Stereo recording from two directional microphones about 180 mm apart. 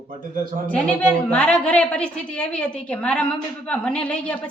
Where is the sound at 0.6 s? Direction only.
5° left (ahead or behind).